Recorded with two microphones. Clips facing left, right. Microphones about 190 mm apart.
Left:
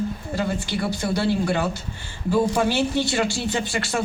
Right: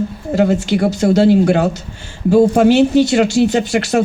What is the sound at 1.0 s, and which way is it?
Speech, 65° right (ahead or behind).